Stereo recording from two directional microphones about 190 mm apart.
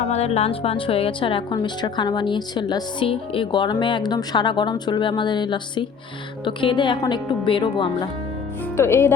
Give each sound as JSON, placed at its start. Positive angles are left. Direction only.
{"t": 0.1, "sound": "a woman's voice", "side_deg": 35}
{"t": 8.7, "sound": "speech", "side_deg": 15}